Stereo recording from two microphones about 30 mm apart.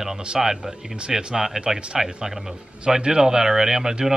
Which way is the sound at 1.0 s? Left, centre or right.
Right.